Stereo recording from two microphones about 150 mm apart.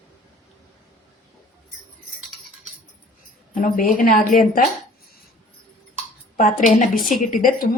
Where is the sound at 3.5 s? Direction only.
65° left (ahead or behind).